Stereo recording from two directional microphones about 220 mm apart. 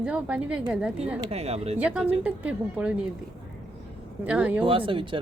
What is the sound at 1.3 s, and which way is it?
Speech, 30° right (ahead or behind).